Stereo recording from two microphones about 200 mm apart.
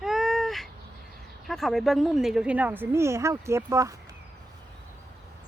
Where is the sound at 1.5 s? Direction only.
Centre (ahead or behind); by 4.0 s 15° right (ahead or behind).